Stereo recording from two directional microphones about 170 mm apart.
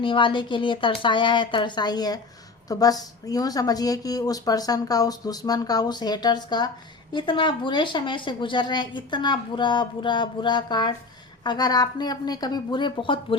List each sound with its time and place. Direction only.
0.0 s speech: 30° left (ahead or behind)